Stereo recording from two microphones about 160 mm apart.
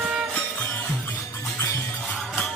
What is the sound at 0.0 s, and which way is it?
Music, centre (ahead or behind).